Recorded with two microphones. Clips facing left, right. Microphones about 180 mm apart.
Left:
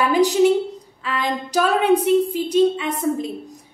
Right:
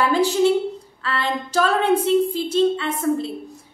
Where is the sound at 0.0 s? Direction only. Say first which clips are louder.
Left 2 dB; 15° left (ahead or behind).